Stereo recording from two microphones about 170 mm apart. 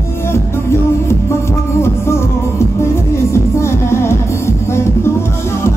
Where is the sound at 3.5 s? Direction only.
15° left (ahead or behind).